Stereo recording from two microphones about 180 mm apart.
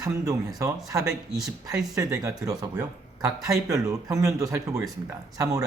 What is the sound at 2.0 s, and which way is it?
Speech, 15° right (ahead or behind).